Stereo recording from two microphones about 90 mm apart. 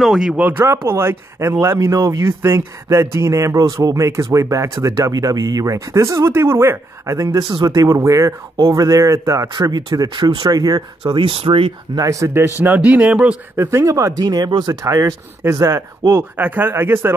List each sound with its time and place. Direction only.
0.0 s speech: 5° right (ahead or behind)
0.4 s a man's voice: 20° right (ahead or behind)
0.7 s speech: 30° right (ahead or behind)
9.5 s speech: 55° right (ahead or behind)
11.0 s speech: 75° right (ahead or behind)
11.9 s speech: 40° right (ahead or behind)
12.6 s a man's voice: 20° right (ahead or behind)
13.6 s speech: 35° right (ahead or behind)